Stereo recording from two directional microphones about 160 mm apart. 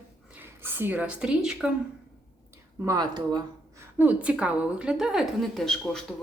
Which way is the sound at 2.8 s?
25° right (ahead or behind).